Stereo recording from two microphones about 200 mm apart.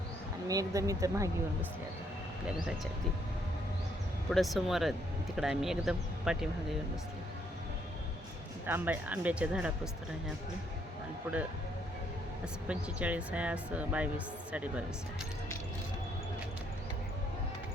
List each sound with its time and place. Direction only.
0.4 s speech: 15° right (ahead or behind)
4.3 s speech: centre (ahead or behind)
8.6 s speech: 10° right (ahead or behind)
12.6 s speech: 5° right (ahead or behind)